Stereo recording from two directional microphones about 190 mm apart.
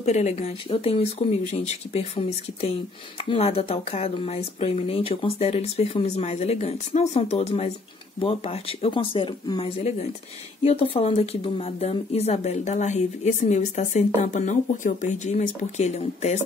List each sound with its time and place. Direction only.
0.0 s speech: 35° left (ahead or behind)